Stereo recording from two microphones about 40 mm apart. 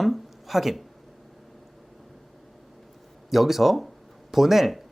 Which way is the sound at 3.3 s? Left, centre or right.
Centre.